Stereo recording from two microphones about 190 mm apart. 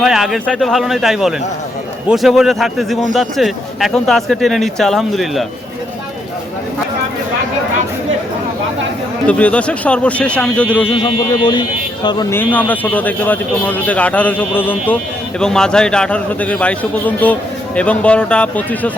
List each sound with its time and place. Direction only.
0.0 s speech: centre (ahead or behind)
9.2 s speech: 5° left (ahead or behind)
10.9 s speech: 20° left (ahead or behind)